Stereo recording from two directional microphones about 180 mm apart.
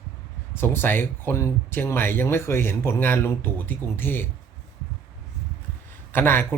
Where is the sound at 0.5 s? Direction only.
10° left (ahead or behind).